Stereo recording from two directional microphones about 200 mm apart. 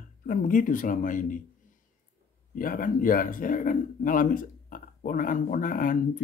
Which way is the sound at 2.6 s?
45° left (ahead or behind).